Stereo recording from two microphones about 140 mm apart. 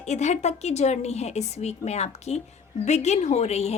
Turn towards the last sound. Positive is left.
turn(degrees=50)  # may be behind; listen again after turning